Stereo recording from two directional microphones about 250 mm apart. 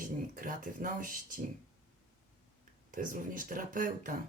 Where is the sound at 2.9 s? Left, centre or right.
Right.